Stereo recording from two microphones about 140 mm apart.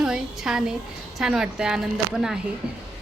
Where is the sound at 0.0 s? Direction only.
5° right (ahead or behind).